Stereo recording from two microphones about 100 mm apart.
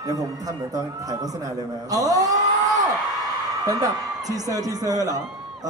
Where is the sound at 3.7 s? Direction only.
35° right (ahead or behind).